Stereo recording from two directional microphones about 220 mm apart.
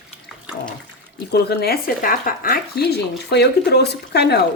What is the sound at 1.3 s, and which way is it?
A woman's voice, 45° left (ahead or behind).